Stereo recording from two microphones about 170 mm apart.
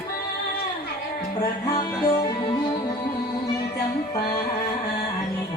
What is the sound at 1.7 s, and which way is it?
Music, 20° left (ahead or behind).